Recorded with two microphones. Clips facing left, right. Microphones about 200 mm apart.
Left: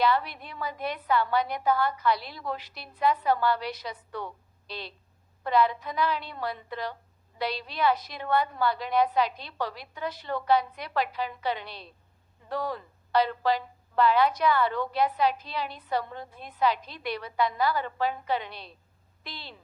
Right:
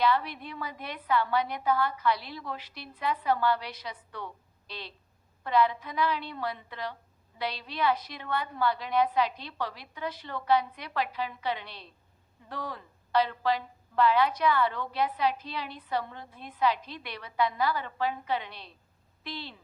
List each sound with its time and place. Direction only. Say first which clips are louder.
0.6 s a woman's voice: left 9 dB; 40° left (ahead or behind)
5.4 s a woman's voice: left 1 dB; 40° left (ahead or behind)